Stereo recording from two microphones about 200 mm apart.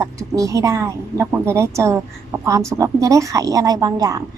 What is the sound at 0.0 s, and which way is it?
Speech, 15° right (ahead or behind).